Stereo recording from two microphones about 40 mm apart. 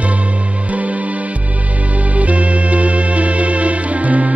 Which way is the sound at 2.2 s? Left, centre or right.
Right.